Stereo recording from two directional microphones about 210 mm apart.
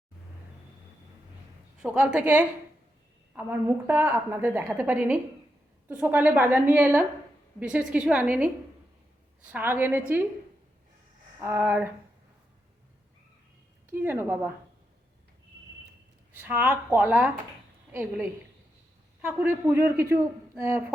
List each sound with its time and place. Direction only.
1.8 s a woman's voice: 5° right (ahead or behind)
11.3 s a woman's voice: 10° right (ahead or behind)
13.9 s a woman's voice: 10° right (ahead or behind)
16.4 s a woman's voice: 10° right (ahead or behind)
19.3 s a woman's voice: 10° right (ahead or behind)